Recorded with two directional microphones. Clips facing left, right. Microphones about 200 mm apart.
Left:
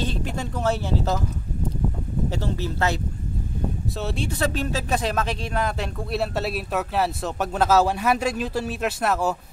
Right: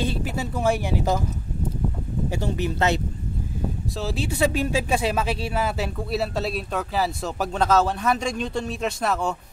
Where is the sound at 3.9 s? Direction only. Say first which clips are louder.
Right 1 dB; centre (ahead or behind).